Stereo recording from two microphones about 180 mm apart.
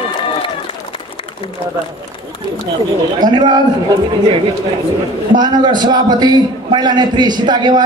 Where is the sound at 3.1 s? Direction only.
25° right (ahead or behind).